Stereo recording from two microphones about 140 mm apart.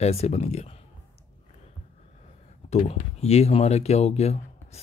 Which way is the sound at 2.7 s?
50° left (ahead or behind).